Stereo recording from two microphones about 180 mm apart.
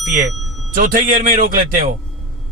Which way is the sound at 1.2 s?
50° right (ahead or behind).